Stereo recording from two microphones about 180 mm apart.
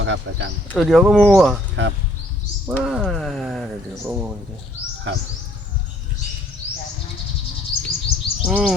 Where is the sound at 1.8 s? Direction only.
80° right.